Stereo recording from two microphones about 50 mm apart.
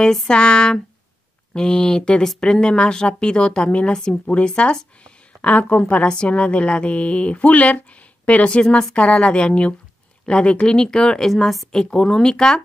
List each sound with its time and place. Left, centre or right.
0.3 s a woman's voice: centre
8.6 s a woman's voice: centre
8.9 s a woman's voice: left